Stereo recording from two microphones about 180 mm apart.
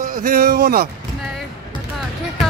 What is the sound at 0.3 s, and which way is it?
Speech, 55° right (ahead or behind).